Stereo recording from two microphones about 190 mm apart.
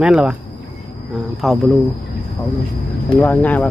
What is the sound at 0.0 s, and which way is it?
Speech, 5° right (ahead or behind).